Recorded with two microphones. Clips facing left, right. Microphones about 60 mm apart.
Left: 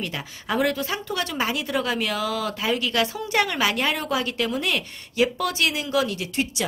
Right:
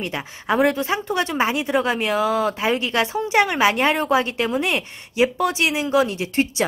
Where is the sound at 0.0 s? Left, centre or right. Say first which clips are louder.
Right 4 dB; right.